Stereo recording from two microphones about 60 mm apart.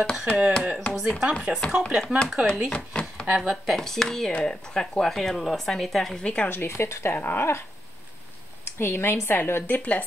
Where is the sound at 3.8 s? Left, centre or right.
Centre.